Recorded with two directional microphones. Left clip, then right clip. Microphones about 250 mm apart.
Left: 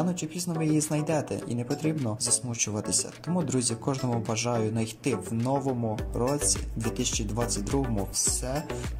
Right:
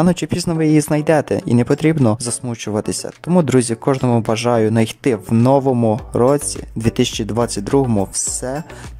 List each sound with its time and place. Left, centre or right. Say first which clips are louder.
0.0 s speech: right 14 dB; right